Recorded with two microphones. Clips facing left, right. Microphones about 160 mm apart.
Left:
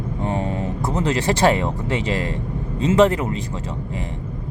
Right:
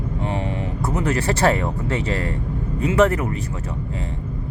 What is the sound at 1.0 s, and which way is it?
Speech, 15° left (ahead or behind).